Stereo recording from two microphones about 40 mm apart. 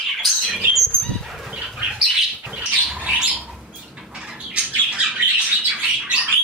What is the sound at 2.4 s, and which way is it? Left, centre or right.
Bird, right.